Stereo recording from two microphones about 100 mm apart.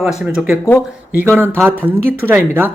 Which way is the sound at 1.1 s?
25° right (ahead or behind).